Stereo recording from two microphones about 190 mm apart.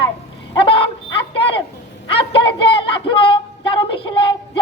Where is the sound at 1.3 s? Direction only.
30° left (ahead or behind).